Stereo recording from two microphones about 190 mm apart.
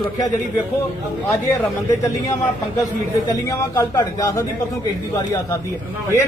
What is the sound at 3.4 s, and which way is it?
Speech, 15° left (ahead or behind).